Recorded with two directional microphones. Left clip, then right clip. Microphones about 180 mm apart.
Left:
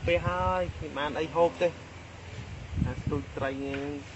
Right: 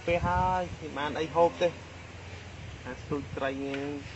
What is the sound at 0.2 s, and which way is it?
Speech, 35° right (ahead or behind).